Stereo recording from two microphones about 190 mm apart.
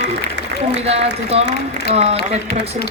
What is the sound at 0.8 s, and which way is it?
A man's voice, 35° right (ahead or behind).